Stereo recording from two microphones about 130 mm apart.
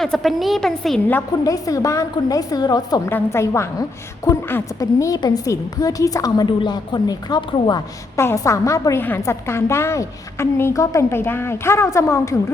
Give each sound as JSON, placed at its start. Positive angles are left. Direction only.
{"t": 0.0, "sound": "a woman's voice", "side_deg": 0}
{"t": 1.5, "sound": "a woman's voice", "side_deg": 25}
{"t": 3.1, "sound": "a woman's voice", "side_deg": 20}
{"t": 8.2, "sound": "a woman's voice", "side_deg": 20}